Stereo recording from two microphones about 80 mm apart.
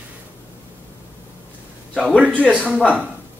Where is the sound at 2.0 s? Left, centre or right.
Centre.